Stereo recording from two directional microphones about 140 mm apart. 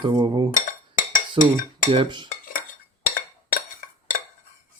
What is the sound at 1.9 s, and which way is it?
Dishes, 35° right (ahead or behind).